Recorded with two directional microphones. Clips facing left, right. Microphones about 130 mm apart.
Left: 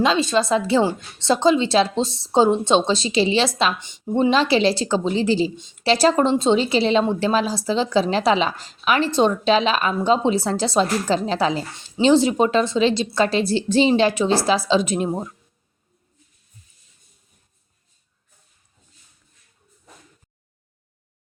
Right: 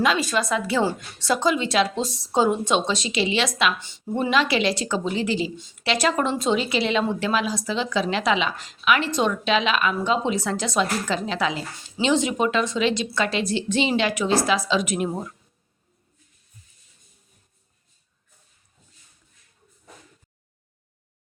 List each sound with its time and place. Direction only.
0.0 s a woman's voice: 25° left (ahead or behind)
3.8 s a woman's voice: 20° left (ahead or behind)